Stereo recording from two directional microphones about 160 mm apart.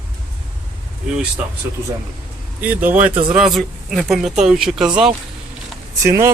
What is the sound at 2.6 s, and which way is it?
Speech, 10° right (ahead or behind).